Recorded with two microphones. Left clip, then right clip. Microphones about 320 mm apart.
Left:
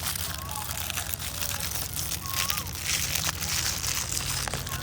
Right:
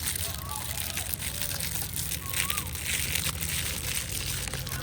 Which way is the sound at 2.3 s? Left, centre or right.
Centre.